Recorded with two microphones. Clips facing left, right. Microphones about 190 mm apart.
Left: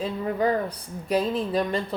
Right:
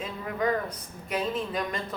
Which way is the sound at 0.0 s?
30° left (ahead or behind).